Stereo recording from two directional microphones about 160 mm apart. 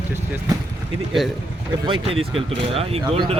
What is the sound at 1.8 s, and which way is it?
Speech, 35° right (ahead or behind).